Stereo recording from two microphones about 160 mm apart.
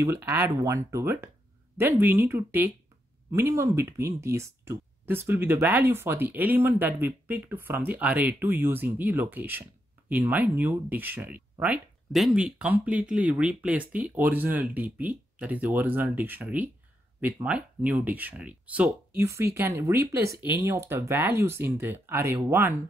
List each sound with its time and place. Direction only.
0.0 s speech: 15° right (ahead or behind)